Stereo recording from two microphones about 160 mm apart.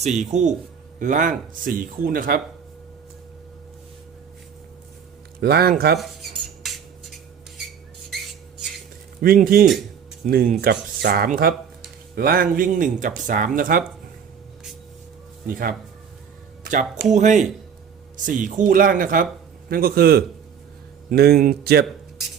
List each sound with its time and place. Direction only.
0.0 s speech: 45° right (ahead or behind); by 2.4 s 65° right (ahead or behind)
5.4 s speech: 80° right
6.0 s cutlery: centre (ahead or behind)
9.2 s speech: 65° right (ahead or behind)
15.4 s speech: 65° right (ahead or behind)
17.1 s speech: 50° right (ahead or behind)
19.7 s speech: 70° right (ahead or behind)